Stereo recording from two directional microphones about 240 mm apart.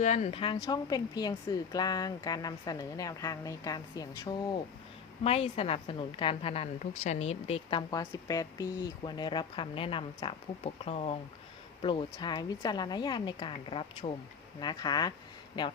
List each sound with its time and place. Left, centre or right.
0.0 s a woman's voice: left
5.2 s a woman's voice: left